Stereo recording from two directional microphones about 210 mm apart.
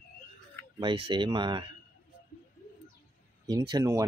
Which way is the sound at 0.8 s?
25° right (ahead or behind).